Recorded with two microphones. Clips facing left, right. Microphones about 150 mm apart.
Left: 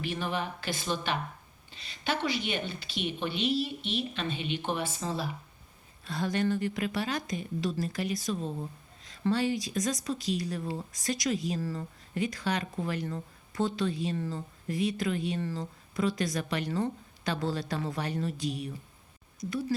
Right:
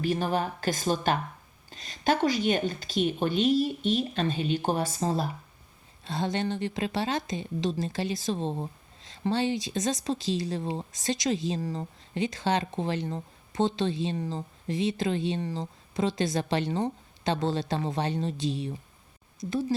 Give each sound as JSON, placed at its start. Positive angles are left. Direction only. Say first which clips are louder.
{"t": 0.0, "sound": "a woman's voice", "louder": "right 6 dB", "side_deg": -40}
{"t": 6.1, "sound": "a woman's voice", "louder": "even", "side_deg": -25}